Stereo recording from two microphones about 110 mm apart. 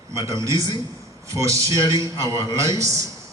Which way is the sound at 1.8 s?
45° left (ahead or behind).